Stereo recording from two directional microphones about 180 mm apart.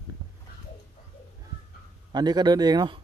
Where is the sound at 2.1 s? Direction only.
20° right (ahead or behind).